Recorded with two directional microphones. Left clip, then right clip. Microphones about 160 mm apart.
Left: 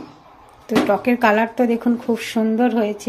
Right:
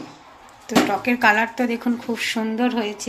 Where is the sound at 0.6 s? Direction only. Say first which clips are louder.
Left 2 dB; 70° left (ahead or behind).